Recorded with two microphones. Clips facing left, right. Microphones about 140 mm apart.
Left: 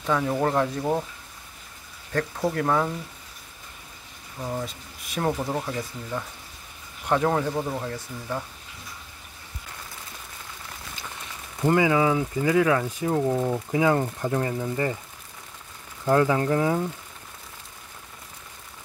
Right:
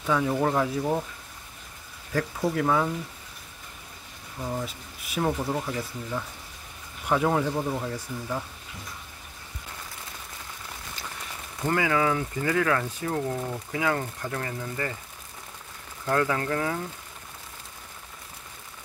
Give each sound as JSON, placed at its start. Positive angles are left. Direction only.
{"t": 0.0, "sound": "speech", "side_deg": 0}
{"t": 2.1, "sound": "speech", "side_deg": -10}
{"t": 4.4, "sound": "speech", "side_deg": 5}
{"t": 4.6, "sound": "speech", "side_deg": -5}
{"t": 11.6, "sound": "speech", "side_deg": 20}
{"t": 16.1, "sound": "speech", "side_deg": 20}